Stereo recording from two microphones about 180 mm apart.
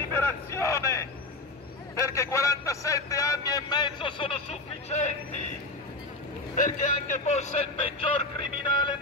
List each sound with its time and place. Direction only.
0.1 s a sound: 15° left (ahead or behind)
2.0 s a man's voice: 15° left (ahead or behind); by 5.1 s 35° left (ahead or behind)
6.5 s a man's voice: 45° left (ahead or behind); by 8.9 s 25° left (ahead or behind)